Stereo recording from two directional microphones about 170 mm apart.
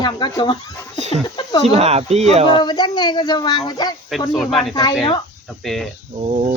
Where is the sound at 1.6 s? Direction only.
40° right (ahead or behind).